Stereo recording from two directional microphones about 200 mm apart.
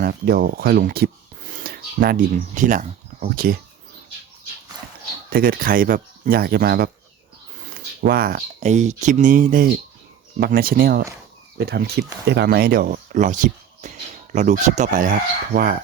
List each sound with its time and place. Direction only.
0.0 s speech: 50° right (ahead or behind)
1.5 s filing: 50° right (ahead or behind)
2.6 s speech: 40° right (ahead or behind)
5.3 s speech: 50° right (ahead or behind)
8.0 s speech: 50° right (ahead or behind)